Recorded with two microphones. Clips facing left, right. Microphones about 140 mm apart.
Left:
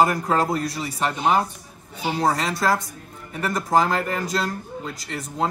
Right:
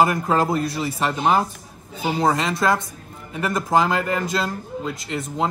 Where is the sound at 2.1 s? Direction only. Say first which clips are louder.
Right 2 dB; centre (ahead or behind).